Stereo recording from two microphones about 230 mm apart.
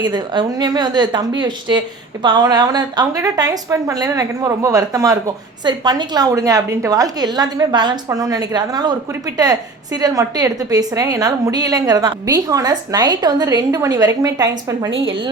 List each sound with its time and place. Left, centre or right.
0.0 s a woman's voice: centre